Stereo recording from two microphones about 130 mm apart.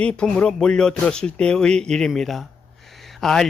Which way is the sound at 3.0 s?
Centre (ahead or behind).